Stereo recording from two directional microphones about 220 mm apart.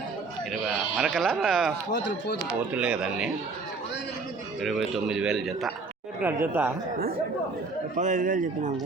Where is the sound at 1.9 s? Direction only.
50° left (ahead or behind).